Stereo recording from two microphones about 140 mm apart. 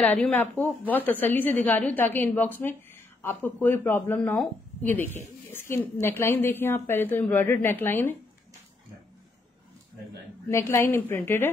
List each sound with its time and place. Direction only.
0.0 s a woman's voice: 10° left (ahead or behind)
10.5 s a woman's voice: 20° left (ahead or behind)